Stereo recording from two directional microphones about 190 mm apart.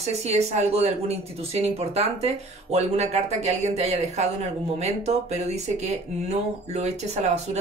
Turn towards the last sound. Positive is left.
turn(degrees=-35)  # may be behind; listen again after turning